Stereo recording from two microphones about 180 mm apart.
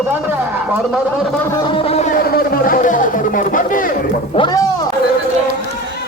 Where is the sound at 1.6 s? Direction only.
30° left (ahead or behind); by 3.9 s 50° left (ahead or behind).